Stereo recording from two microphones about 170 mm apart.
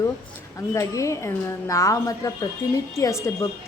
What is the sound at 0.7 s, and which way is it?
A woman's voice, 15° left (ahead or behind).